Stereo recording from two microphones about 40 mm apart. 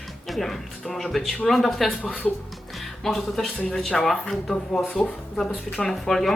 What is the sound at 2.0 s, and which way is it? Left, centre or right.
Speech, left.